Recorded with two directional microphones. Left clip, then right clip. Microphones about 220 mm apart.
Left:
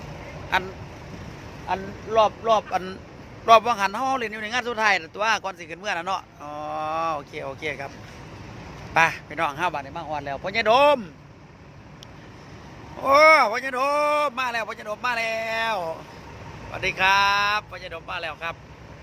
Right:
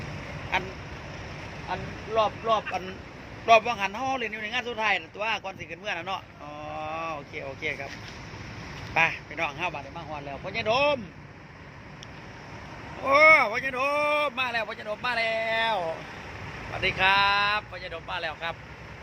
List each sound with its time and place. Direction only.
1.7 s a man's voice: 35° left (ahead or behind)
9.0 s a man's voice: 25° left (ahead or behind)
13.1 s speech: 20° left (ahead or behind)